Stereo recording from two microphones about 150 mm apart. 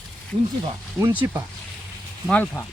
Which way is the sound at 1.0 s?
20° right (ahead or behind).